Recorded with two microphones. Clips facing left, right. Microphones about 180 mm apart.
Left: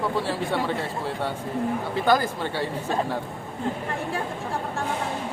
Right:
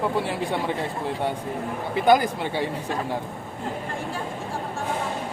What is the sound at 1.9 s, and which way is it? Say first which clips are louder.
Speech: right 5 dB; 15° right (ahead or behind).